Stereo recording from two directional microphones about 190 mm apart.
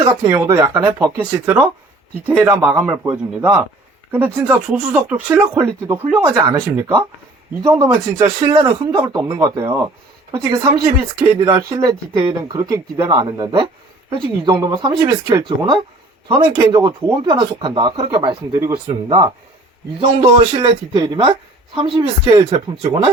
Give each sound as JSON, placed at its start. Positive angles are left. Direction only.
{"t": 0.3, "sound": "speech", "side_deg": -15}
{"t": 8.5, "sound": "speech", "side_deg": -25}
{"t": 14.7, "sound": "speech", "side_deg": -30}
{"t": 15.0, "sound": "speech", "side_deg": -15}